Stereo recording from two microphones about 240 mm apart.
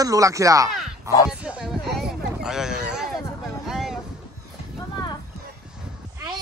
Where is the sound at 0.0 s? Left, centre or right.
Centre.